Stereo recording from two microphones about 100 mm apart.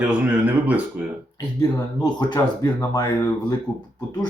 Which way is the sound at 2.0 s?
45° left (ahead or behind).